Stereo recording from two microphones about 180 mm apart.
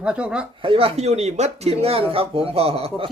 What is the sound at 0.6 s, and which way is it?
Speech, 30° right (ahead or behind).